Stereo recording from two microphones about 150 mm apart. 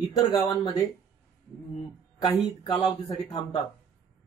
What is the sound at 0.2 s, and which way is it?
Speech, 30° left (ahead or behind).